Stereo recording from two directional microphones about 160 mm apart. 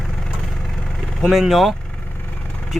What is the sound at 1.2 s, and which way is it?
Speech, centre (ahead or behind).